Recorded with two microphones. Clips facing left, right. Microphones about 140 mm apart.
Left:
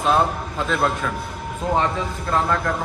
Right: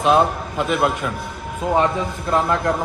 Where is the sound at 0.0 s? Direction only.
15° right (ahead or behind).